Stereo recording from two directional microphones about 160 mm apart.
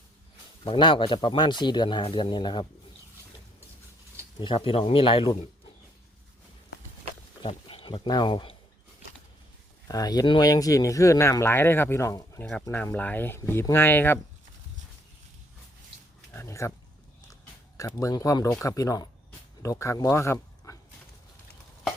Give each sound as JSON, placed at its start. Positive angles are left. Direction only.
{"t": 0.6, "sound": "speech", "side_deg": 30}
{"t": 4.4, "sound": "speech", "side_deg": 30}
{"t": 7.4, "sound": "speech", "side_deg": 35}
{"t": 9.8, "sound": "speech", "side_deg": 25}
{"t": 16.3, "sound": "a sound", "side_deg": 15}
{"t": 17.7, "sound": "speech", "side_deg": 20}